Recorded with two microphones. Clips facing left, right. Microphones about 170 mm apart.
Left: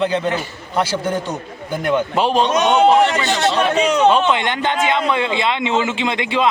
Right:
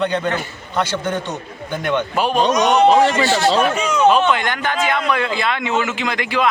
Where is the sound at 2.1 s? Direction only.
30° left (ahead or behind).